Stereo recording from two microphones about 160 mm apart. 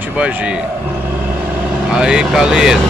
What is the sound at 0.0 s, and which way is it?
Speech, 10° right (ahead or behind).